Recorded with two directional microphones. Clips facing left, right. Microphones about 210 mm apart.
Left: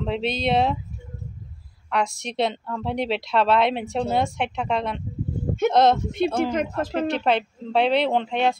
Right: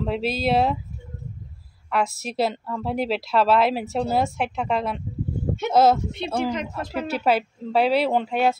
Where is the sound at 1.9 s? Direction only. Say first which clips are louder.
Right 1 dB; 5° right (ahead or behind).